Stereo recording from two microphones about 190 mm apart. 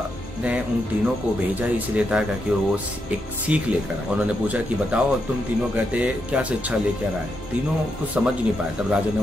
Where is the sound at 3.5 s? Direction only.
5° right (ahead or behind).